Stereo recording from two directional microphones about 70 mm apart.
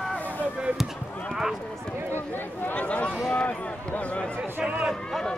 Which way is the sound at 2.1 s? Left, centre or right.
Left.